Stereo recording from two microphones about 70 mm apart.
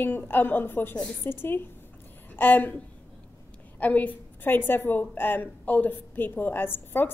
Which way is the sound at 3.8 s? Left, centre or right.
Left.